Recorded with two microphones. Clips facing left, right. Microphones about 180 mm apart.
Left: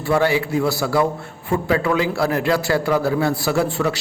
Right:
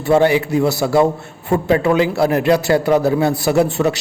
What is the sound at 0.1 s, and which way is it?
Speech, 20° right (ahead or behind).